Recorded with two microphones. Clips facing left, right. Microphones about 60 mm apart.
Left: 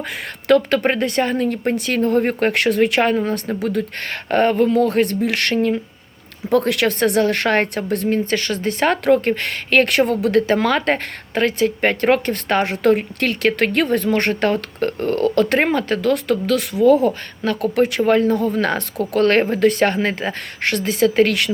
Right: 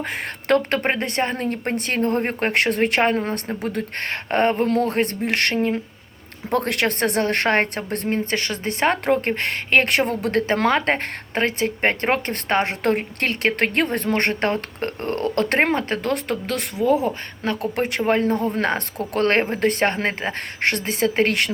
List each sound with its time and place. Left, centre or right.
0.4 s a woman's voice: right
10.2 s a woman's voice: right